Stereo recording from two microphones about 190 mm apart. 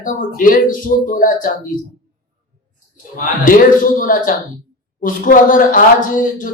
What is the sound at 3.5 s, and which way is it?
Speech, 45° left (ahead or behind).